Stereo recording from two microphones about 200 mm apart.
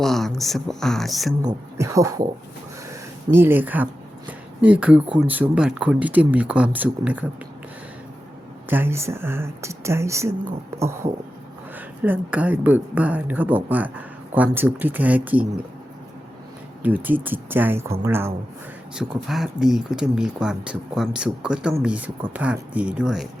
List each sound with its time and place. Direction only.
0.0 s speech: centre (ahead or behind)
1.5 s speech: 15° right (ahead or behind)
3.3 s speech: 10° right (ahead or behind)
8.7 s speech: 10° right (ahead or behind)
12.0 s speech: 10° right (ahead or behind)
16.8 s speech: 10° right (ahead or behind)
18.9 s speech: centre (ahead or behind)